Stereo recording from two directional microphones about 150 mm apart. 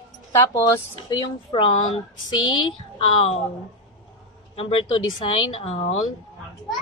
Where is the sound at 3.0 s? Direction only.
40° left (ahead or behind).